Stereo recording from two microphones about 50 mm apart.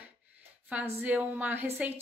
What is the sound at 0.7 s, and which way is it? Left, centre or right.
A woman's voice, right.